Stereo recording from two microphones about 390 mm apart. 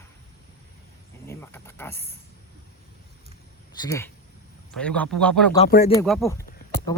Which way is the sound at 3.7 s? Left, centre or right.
Centre.